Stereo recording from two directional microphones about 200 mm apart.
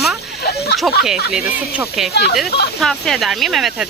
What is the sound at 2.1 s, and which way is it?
Speech, 55° left (ahead or behind).